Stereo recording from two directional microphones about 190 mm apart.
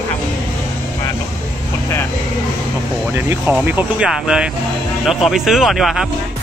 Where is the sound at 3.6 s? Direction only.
5° right (ahead or behind).